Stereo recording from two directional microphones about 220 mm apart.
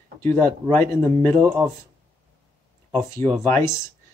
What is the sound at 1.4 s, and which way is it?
Speech, 10° right (ahead or behind).